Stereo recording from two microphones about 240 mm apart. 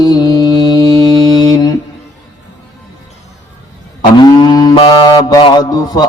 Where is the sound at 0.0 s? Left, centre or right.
Centre.